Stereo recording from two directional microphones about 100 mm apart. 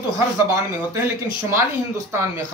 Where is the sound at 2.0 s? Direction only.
25° right (ahead or behind).